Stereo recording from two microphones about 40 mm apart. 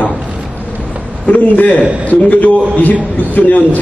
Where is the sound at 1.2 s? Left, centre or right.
Left.